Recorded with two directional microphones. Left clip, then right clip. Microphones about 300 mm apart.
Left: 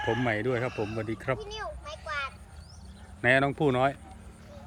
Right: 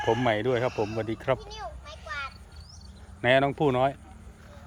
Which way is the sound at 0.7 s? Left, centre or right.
Right.